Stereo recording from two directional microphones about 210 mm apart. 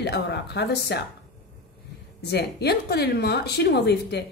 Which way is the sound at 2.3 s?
50° left (ahead or behind).